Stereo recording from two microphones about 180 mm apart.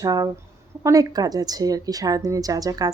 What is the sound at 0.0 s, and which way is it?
Speech, 20° right (ahead or behind).